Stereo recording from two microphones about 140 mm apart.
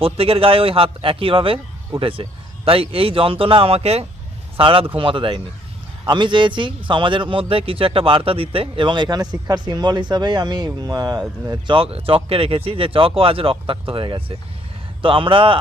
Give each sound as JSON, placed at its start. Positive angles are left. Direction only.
{"t": 0.0, "sound": "speech", "side_deg": -40}